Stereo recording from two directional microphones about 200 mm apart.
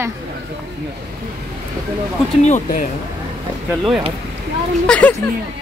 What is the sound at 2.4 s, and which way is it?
Speech, 40° left (ahead or behind).